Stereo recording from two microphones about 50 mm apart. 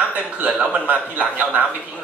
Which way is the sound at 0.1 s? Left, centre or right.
Right.